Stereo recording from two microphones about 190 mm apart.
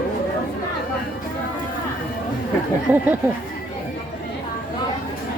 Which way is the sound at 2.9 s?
5° right (ahead or behind).